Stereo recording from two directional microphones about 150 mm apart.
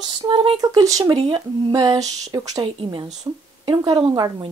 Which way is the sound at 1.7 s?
25° right (ahead or behind).